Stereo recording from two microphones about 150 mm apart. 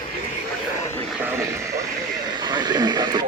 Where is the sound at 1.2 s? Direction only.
15° right (ahead or behind).